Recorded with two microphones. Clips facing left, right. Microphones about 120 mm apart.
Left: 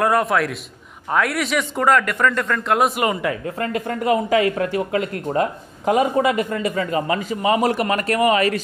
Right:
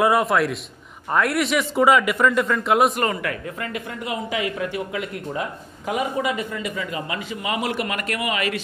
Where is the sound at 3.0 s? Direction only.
20° left (ahead or behind).